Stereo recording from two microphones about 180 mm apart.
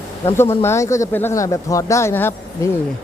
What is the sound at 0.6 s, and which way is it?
Speech, 15° left (ahead or behind).